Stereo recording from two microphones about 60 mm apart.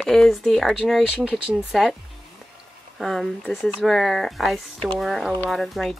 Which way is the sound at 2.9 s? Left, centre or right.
Centre.